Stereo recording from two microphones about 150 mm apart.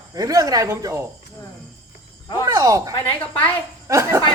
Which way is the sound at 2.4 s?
20° right (ahead or behind).